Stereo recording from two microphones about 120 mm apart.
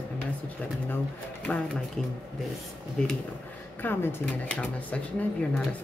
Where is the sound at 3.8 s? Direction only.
15° left (ahead or behind).